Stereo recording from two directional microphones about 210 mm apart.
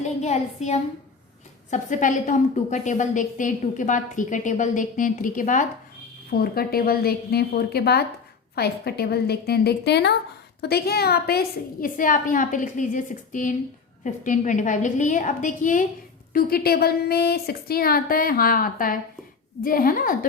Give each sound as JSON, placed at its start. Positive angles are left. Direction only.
{"t": 0.0, "sound": "a woman's voice", "side_deg": 35}